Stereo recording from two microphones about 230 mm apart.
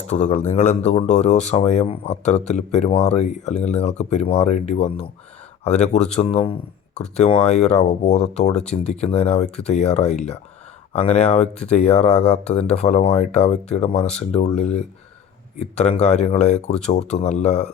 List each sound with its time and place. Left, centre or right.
0.2 s speech: left